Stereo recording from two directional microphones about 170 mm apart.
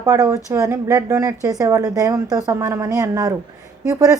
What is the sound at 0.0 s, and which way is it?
A woman's voice, 20° right (ahead or behind).